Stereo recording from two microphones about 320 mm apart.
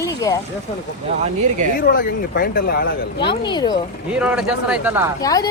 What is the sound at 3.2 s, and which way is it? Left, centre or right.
Speech, centre.